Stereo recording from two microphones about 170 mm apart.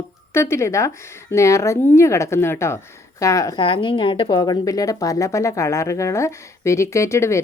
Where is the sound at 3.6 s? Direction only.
30° left (ahead or behind).